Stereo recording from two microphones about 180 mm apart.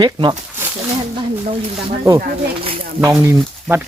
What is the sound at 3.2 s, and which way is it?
Speech, 15° right (ahead or behind).